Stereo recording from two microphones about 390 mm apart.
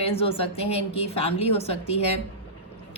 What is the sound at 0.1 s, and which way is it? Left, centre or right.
A woman's voice, centre.